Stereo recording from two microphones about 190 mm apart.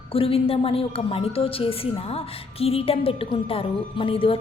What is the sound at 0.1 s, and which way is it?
A woman's voice, 30° left (ahead or behind).